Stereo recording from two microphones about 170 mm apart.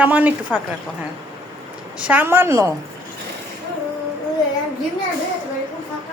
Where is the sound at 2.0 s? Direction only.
10° right (ahead or behind).